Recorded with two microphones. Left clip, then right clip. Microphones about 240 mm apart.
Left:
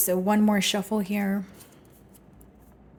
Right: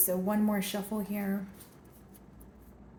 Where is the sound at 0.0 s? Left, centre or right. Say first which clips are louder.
Left 7 dB; left.